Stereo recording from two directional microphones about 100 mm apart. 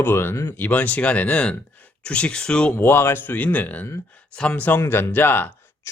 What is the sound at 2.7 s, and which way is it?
Speech, 25° left (ahead or behind).